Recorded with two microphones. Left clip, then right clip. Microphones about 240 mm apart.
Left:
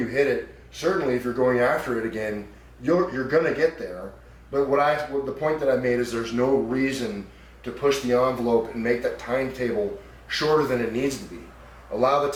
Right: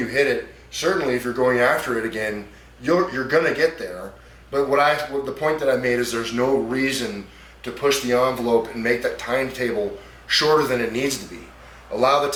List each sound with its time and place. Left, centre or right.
0.0 s speech: centre
3.8 s speech: centre
4.7 s speech: centre